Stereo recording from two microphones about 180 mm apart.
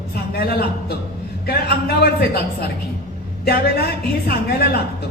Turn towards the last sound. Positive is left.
turn(degrees=60)  # may be behind; listen again after turning